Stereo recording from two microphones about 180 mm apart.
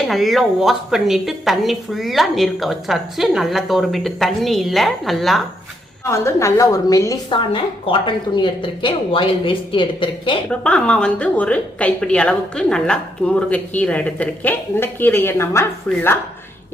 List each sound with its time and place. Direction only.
0.1 s a woman's voice: centre (ahead or behind)
6.1 s a woman's voice: 15° left (ahead or behind)
10.5 s a woman's voice: 5° left (ahead or behind)